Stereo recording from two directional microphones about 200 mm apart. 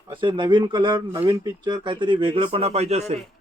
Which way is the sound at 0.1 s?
25° right (ahead or behind).